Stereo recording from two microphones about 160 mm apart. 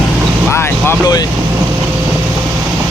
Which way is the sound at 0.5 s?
15° left (ahead or behind).